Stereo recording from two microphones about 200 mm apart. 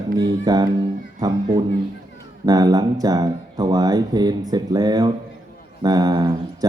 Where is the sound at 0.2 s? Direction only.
20° right (ahead or behind).